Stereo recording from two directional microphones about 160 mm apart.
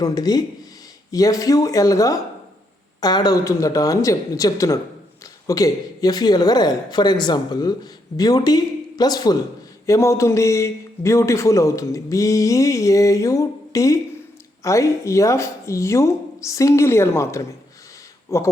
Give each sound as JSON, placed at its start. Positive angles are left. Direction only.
{"t": 0.0, "sound": "speech", "side_deg": 25}